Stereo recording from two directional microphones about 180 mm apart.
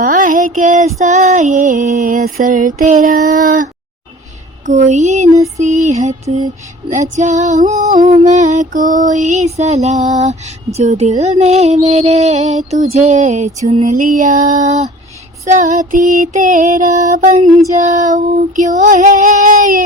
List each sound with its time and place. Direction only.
0.0 s female singing: 45° right (ahead or behind)